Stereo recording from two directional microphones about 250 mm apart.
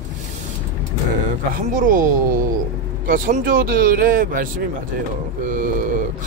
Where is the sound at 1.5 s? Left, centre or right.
Right.